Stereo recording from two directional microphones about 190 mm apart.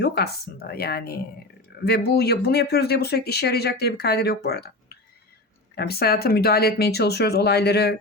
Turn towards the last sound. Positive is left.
turn(degrees=60)  # may be behind; listen again after turning